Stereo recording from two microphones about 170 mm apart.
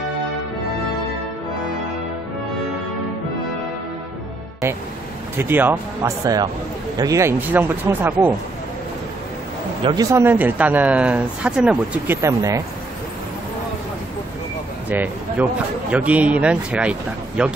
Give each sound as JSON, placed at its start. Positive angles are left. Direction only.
{"t": 5.4, "sound": "speech", "side_deg": -10}
{"t": 9.8, "sound": "speech", "side_deg": -25}
{"t": 10.2, "sound": "speech", "side_deg": -10}
{"t": 14.9, "sound": "speech", "side_deg": -10}